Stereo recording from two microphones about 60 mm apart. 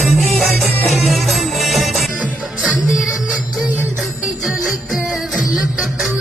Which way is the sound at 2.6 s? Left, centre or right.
Centre.